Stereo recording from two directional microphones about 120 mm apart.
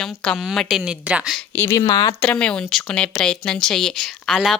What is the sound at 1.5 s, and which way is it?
Speech, 20° left (ahead or behind).